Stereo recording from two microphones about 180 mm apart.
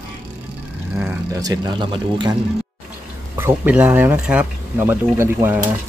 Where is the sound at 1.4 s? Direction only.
25° right (ahead or behind).